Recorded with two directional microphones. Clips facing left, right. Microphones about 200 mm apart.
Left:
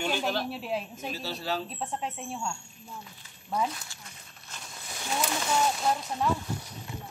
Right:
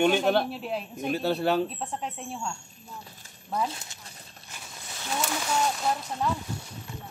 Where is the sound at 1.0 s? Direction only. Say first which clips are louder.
Right 9 dB; 55° right (ahead or behind).